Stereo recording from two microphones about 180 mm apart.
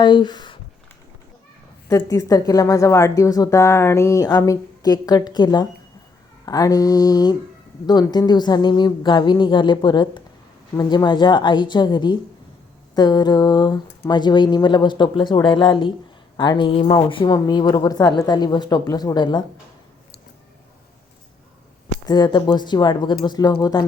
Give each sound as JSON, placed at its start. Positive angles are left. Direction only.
{"t": 0.0, "sound": "speech", "side_deg": 25}
{"t": 1.9, "sound": "a woman's voice", "side_deg": 20}
{"t": 22.0, "sound": "a woman's voice", "side_deg": 25}